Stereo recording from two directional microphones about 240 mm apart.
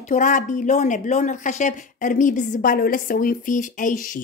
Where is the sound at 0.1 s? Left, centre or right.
Left.